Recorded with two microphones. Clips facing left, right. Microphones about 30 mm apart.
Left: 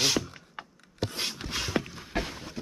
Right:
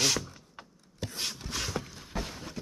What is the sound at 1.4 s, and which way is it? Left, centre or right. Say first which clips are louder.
Walk: left 3 dB; left.